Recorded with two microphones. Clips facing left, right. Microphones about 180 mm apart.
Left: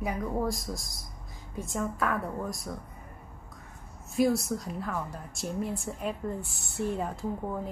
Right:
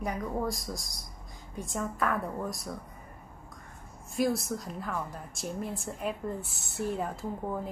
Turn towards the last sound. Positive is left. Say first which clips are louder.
# left 1 dB
turn(degrees=0)  # may be behind; listen again after turning